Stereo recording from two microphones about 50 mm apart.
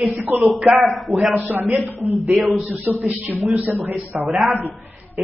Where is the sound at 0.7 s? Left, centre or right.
Centre.